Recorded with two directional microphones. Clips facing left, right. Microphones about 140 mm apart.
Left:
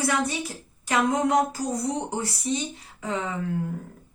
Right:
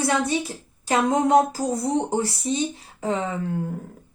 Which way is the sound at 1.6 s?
50° right (ahead or behind).